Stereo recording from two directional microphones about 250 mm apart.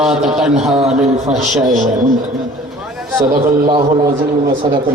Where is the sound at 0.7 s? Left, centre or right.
Right.